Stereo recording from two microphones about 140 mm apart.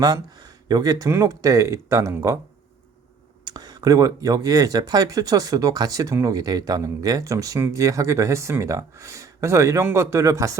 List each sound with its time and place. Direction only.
0.0 s speech: 30° right (ahead or behind)
3.4 s speech: 30° right (ahead or behind)